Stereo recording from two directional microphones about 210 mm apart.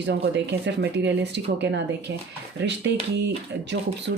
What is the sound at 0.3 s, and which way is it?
Speech, 55° right (ahead or behind).